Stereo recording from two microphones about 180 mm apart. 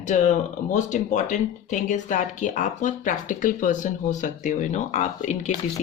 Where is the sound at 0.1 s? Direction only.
40° left (ahead or behind).